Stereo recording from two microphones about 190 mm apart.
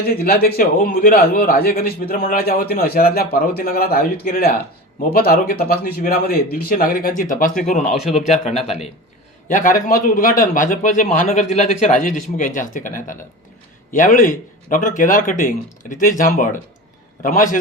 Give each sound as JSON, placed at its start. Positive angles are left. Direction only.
{"t": 0.1, "sound": "a man's voice", "side_deg": 50}